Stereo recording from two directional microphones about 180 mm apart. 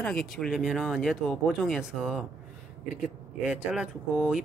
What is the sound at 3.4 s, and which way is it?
Speech, 5° right (ahead or behind).